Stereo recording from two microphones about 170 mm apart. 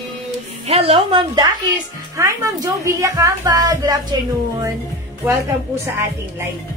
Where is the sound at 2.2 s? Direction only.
20° right (ahead or behind).